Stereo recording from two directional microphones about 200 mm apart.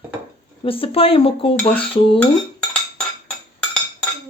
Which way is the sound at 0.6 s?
25° left (ahead or behind).